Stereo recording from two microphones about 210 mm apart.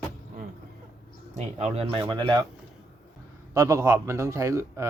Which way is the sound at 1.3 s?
30° right (ahead or behind).